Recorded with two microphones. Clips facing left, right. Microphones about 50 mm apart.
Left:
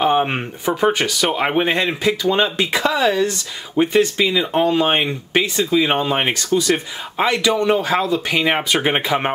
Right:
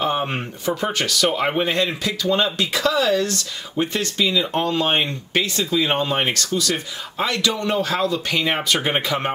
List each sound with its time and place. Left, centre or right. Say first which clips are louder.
0.0 s speech: left 5 dB; left
4.5 s speech: left 4 dB; centre